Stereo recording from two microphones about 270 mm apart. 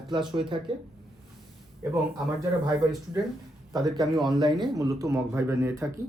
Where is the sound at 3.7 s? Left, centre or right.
Centre.